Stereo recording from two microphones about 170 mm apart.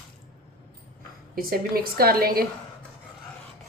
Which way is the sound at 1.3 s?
60° right (ahead or behind).